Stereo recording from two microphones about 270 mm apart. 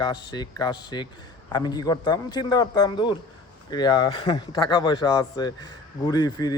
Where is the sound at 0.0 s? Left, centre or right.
Centre.